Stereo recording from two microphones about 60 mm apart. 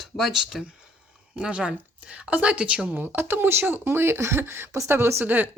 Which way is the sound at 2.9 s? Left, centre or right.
Right.